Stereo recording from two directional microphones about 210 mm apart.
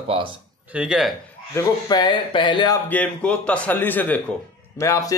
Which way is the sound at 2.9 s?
5° left (ahead or behind).